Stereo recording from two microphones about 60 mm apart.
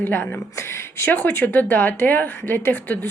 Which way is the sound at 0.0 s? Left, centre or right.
Left.